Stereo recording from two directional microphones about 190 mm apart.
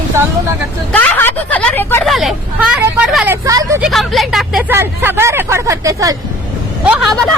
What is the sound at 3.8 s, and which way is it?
Speech, centre (ahead or behind).